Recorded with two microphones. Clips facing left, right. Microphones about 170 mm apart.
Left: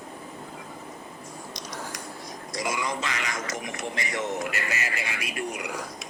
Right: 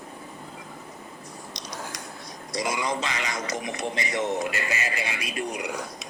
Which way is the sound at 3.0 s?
20° right (ahead or behind).